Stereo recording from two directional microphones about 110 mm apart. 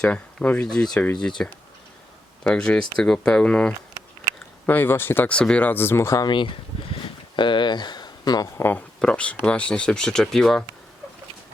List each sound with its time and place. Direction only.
0.0 s speech: 10° left (ahead or behind)
2.4 s speech: 5° left (ahead or behind)
6.1 s speech: 45° left (ahead or behind)
8.5 s speech: 20° left (ahead or behind)
9.0 s speech: 10° left (ahead or behind)